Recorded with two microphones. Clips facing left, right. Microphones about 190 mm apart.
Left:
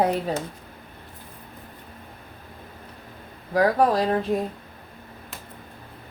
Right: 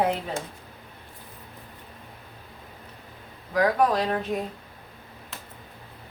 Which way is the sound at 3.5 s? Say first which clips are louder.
Left 2 dB; 30° left (ahead or behind).